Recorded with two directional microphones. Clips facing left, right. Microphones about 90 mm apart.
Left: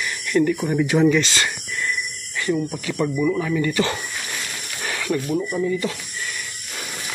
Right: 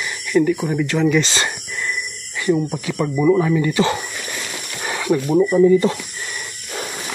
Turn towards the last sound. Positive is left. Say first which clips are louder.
# right 10 dB
turn(degrees=-35)  # may be behind; listen again after turning